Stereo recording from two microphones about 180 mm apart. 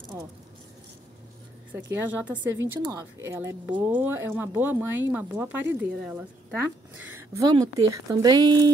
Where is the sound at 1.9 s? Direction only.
10° right (ahead or behind).